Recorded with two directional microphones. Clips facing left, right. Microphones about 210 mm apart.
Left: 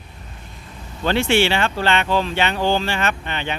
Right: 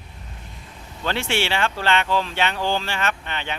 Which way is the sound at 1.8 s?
15° left (ahead or behind).